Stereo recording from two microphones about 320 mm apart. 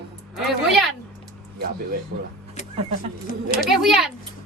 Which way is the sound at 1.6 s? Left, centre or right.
Right.